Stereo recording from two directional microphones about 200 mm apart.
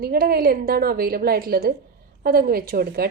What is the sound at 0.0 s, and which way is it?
A woman's voice, 50° right (ahead or behind).